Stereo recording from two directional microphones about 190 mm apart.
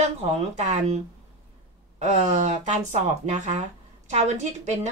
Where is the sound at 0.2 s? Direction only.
35° right (ahead or behind).